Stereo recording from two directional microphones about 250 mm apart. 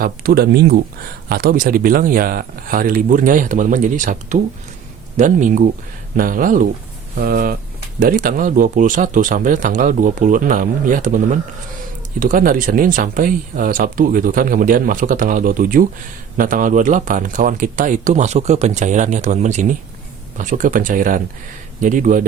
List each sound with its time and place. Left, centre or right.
0.0 s speech: right